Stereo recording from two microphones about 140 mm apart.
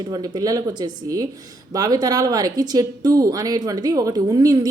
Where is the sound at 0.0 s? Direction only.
30° right (ahead or behind).